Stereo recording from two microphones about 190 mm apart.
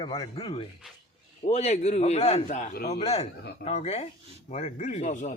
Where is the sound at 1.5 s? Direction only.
35° left (ahead or behind).